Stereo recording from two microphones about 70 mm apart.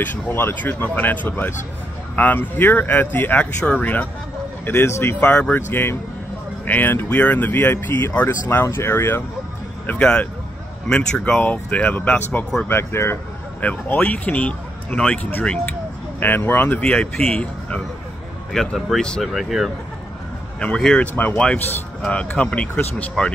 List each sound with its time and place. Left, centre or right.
0.0 s speech: left
4.6 s speech: left
5.3 s speech: left
8.3 s speech: left
9.8 s speech: centre
11.3 s speech: left
12.6 s speech: left
13.6 s speech: left
16.8 s speech: centre
18.5 s speech: centre
19.2 s speech: centre
20.6 s speech: centre